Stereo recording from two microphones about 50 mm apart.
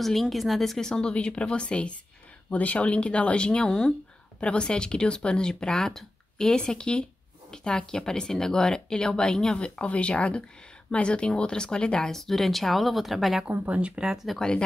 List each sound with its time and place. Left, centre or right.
0.0 s speech: centre
13.7 s speech: right
14.0 s speech: centre